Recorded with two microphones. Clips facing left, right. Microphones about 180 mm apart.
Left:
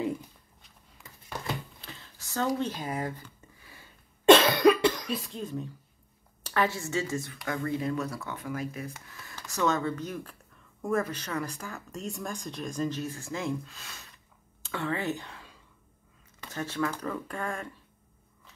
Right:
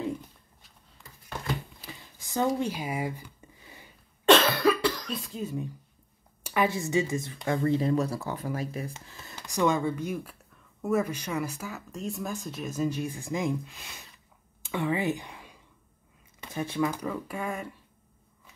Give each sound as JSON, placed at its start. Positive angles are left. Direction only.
{"t": 1.8, "sound": "a sound", "side_deg": -15}
{"t": 4.3, "sound": "cough", "side_deg": 15}
{"t": 5.1, "sound": "speech", "side_deg": 0}